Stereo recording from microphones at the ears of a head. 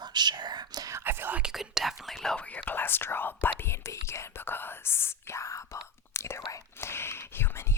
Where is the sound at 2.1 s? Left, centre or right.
Centre.